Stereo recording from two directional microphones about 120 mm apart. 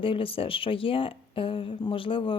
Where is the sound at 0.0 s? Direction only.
50° left (ahead or behind).